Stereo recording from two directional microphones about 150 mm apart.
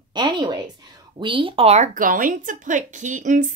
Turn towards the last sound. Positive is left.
turn(degrees=-55)  # may be behind; listen again after turning